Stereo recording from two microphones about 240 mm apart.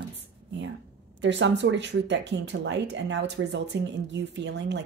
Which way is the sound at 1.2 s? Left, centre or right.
Right.